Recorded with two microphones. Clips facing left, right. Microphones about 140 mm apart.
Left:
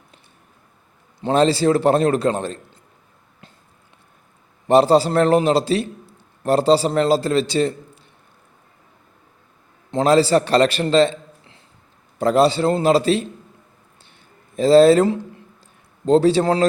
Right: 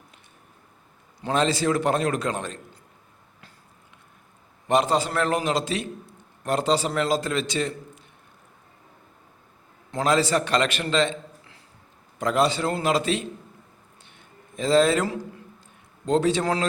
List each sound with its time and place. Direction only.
1.2 s a man's voice: 35° left (ahead or behind)
4.7 s a man's voice: 35° left (ahead or behind)
9.9 s a man's voice: 30° left (ahead or behind)
14.0 s a sound: 35° left (ahead or behind)
16.0 s a man's voice: 35° left (ahead or behind)